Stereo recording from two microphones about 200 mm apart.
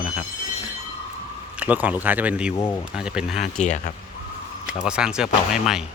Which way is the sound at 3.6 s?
35° left (ahead or behind).